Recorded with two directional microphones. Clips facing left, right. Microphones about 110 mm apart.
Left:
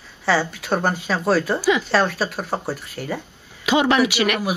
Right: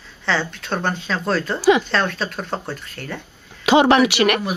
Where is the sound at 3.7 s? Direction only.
65° right (ahead or behind).